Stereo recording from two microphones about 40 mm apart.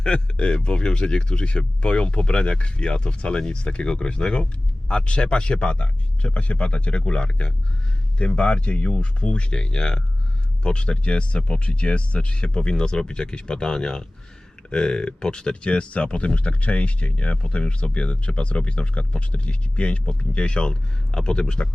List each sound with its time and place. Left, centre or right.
0.0 s speech: left